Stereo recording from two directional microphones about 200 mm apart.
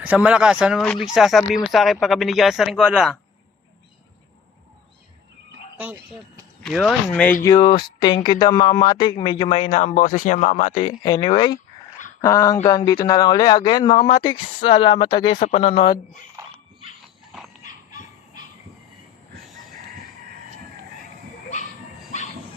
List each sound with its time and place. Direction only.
0.0 s speech: 5° right (ahead or behind)
6.7 s speech: centre (ahead or behind)
7.4 s speech: 20° left (ahead or behind)
11.0 s speech: 20° left (ahead or behind)
15.4 s speech: 35° left (ahead or behind)
16.4 s a sound: 15° right (ahead or behind)